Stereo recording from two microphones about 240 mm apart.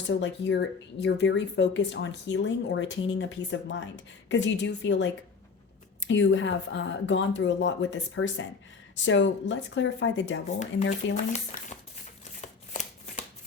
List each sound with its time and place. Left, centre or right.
0.1 s speech: left
10.6 s speech: left
12.4 s shuffling cards: left